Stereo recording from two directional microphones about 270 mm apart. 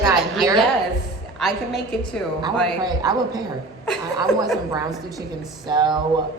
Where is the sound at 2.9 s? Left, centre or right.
Centre.